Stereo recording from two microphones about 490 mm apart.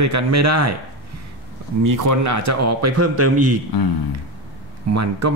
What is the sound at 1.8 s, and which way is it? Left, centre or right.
Speech, right.